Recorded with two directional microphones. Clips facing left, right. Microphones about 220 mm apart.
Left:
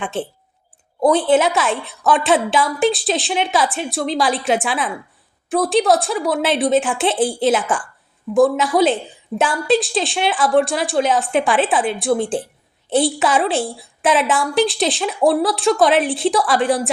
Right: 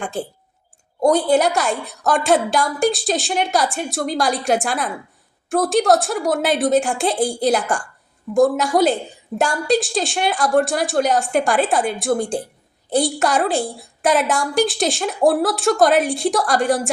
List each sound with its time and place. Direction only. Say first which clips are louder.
1.0 s a woman's voice: left 1 dB; centre (ahead or behind)